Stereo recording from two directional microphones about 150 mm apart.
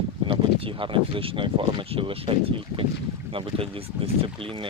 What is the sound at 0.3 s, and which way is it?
Speech, 35° right (ahead or behind).